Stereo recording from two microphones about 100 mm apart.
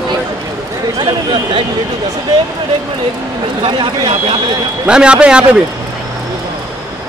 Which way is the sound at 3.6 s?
55° right (ahead or behind).